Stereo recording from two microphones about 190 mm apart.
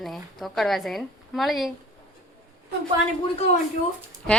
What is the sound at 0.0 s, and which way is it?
Speech, centre (ahead or behind).